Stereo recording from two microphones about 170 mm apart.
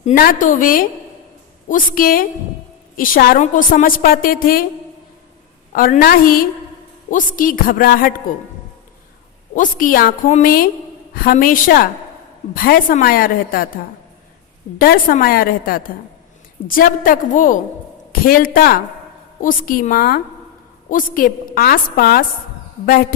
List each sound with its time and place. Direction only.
0.0 s a woman's voice: 55° left (ahead or behind)
5.7 s a woman's voice: 55° left (ahead or behind)
9.6 s a woman's voice: 55° left (ahead or behind)
14.8 s a woman's voice: 55° left (ahead or behind)